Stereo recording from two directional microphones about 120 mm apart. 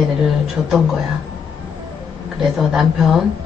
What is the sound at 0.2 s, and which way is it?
Speech, 5° right (ahead or behind).